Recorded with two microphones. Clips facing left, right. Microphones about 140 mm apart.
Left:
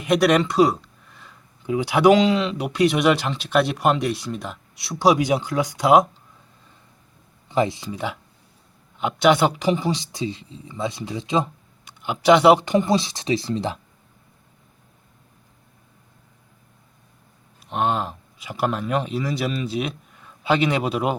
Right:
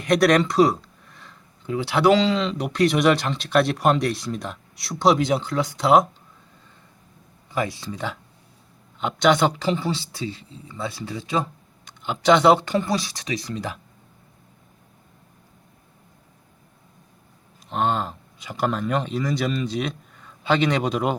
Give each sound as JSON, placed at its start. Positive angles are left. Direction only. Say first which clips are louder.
{"t": 0.0, "sound": "a sound", "louder": "even", "side_deg": 5}
{"t": 1.6, "sound": "speech", "louder": "left 3 dB", "side_deg": 15}
{"t": 7.5, "sound": "speech", "louder": "left 5 dB", "side_deg": 25}
{"t": 7.9, "sound": "speech", "louder": "left 2 dB", "side_deg": 10}
{"t": 11.9, "sound": "speech", "louder": "left 2 dB", "side_deg": 10}
{"t": 17.7, "sound": "speech", "louder": "even", "side_deg": 5}